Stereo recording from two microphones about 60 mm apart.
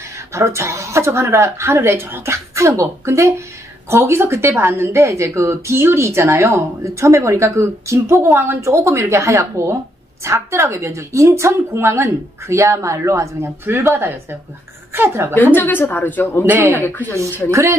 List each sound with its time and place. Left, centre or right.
0.3 s a woman's voice: right
3.9 s a woman's voice: right
8.6 s a woman's voice: right
13.7 s a woman's voice: right
15.9 s speech: left
16.4 s a woman's voice: right
16.7 s speech: left
17.1 s a woman's voice: right